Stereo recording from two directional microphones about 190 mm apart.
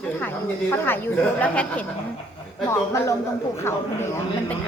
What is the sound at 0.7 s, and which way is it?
Speech, 10° left (ahead or behind).